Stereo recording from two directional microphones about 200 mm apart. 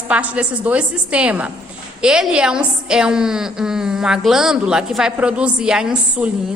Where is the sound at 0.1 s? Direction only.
5° right (ahead or behind).